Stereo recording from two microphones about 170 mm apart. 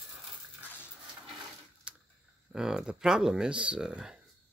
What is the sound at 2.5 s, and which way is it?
Speech, 5° right (ahead or behind).